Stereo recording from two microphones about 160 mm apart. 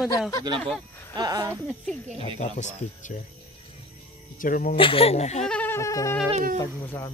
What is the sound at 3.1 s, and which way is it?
Speech, 55° left (ahead or behind).